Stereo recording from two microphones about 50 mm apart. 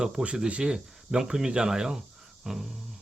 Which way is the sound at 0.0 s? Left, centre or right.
Centre.